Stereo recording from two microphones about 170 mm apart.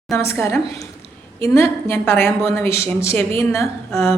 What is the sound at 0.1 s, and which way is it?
A woman's voice, 15° left (ahead or behind).